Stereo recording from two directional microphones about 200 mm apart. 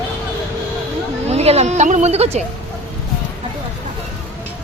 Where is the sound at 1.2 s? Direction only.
30° right (ahead or behind).